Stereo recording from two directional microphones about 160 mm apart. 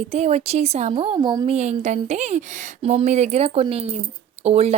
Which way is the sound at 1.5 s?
45° right (ahead or behind).